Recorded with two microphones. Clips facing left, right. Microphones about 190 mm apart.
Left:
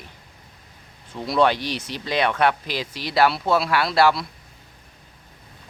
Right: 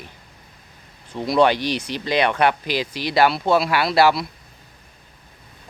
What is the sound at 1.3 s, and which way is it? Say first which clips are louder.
Speech: right 3 dB; centre (ahead or behind).